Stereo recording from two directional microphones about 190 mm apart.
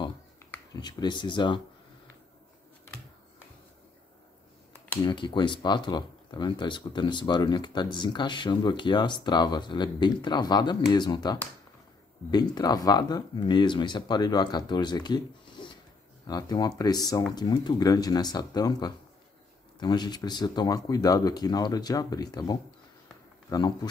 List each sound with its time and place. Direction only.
0.7 s speech: 20° left (ahead or behind)
5.0 s speech: 25° left (ahead or behind)